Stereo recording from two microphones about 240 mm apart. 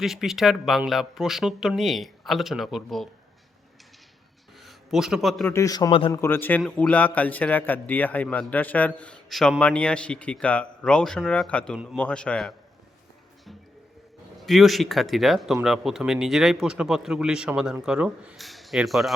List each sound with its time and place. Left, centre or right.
0.0 s a man's voice: centre
4.6 s a man's voice: centre
5.5 s a man's voice: centre
6.2 s a man's voice: centre
14.4 s a man's voice: centre